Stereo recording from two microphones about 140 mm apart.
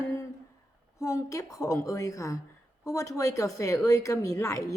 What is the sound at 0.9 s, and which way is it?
Speech, 20° left (ahead or behind).